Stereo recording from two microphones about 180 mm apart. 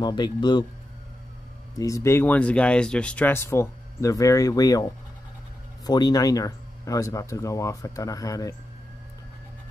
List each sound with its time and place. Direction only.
0.0 s speech: 25° left (ahead or behind)
1.8 s speech: 15° left (ahead or behind)
5.9 s speech: 20° left (ahead or behind)